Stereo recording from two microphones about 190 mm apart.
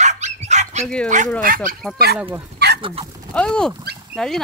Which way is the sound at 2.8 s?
30° right (ahead or behind).